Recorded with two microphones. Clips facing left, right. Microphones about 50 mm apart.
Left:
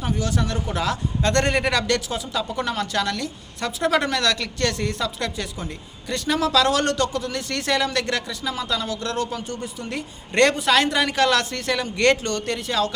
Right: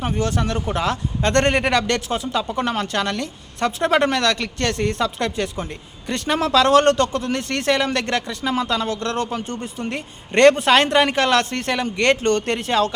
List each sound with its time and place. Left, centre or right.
0.0 s a woman's voice: right
12.3 s speech: right